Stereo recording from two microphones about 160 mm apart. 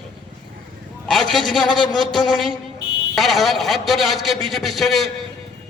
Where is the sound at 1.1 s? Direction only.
Centre (ahead or behind).